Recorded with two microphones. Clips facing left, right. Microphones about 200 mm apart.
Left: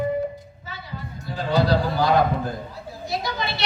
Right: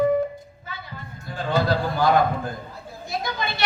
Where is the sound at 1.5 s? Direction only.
50° right (ahead or behind).